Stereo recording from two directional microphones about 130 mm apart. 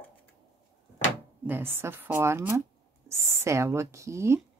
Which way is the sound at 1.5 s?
15° right (ahead or behind).